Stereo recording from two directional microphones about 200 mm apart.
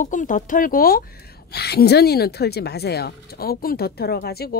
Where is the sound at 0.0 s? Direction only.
40° left (ahead or behind).